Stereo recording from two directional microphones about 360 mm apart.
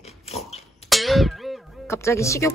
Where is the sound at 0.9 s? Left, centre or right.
Centre.